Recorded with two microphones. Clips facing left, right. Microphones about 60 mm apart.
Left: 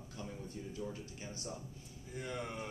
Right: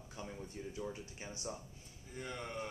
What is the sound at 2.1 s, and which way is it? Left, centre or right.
Speech, centre.